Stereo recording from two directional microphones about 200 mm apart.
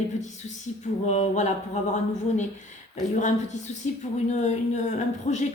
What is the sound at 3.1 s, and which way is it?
Speech, 35° left (ahead or behind).